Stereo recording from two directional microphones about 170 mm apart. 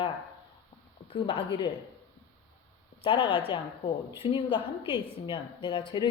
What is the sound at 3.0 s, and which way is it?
A woman's voice, 30° left (ahead or behind).